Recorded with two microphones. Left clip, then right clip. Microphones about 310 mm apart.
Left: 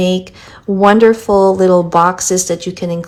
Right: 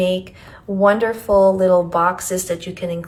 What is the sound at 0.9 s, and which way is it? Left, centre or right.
A woman's voice, left.